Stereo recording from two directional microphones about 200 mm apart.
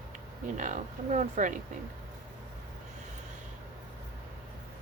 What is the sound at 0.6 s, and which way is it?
Speech, 40° right (ahead or behind).